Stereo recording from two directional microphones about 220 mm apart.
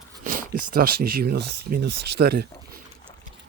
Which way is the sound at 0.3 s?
40° right (ahead or behind).